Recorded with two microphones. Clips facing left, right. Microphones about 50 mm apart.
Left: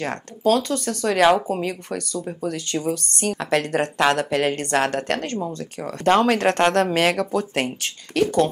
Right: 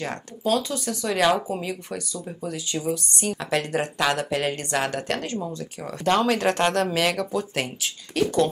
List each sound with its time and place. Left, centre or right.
0.0 s speech: left
1.2 s speech: left
2.4 s speech: left
3.3 s speech: left